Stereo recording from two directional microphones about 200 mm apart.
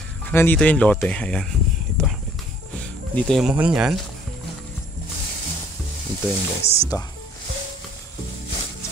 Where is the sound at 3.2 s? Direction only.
Centre (ahead or behind).